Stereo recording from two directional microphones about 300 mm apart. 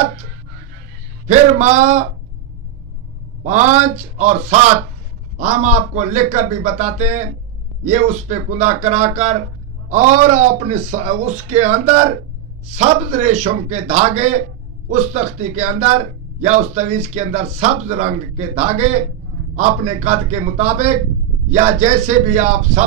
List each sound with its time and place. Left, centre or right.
1.2 s speech: right
3.4 s speech: right